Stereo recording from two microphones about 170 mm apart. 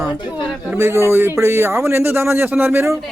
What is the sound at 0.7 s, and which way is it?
Speech, 15° right (ahead or behind).